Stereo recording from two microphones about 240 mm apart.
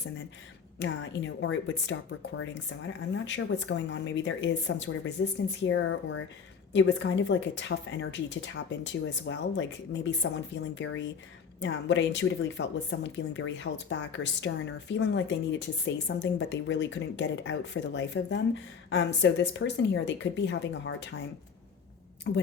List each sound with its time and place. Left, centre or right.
0.8 s speech: left
22.3 s speech: left